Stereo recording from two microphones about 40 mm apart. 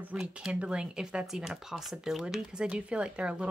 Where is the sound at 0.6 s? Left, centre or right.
Right.